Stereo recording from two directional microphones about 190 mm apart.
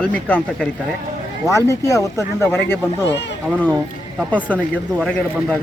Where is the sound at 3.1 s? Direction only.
70° left (ahead or behind).